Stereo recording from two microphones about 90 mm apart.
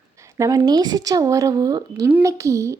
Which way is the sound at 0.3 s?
40° right (ahead or behind).